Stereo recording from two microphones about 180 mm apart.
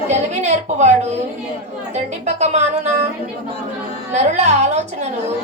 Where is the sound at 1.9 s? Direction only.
40° right (ahead or behind).